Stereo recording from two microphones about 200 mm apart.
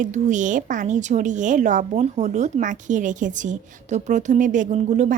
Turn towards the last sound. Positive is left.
turn(degrees=-35)  # may be behind; listen again after turning